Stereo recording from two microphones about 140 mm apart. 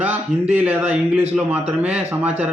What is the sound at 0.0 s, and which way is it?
Speech, 10° right (ahead or behind).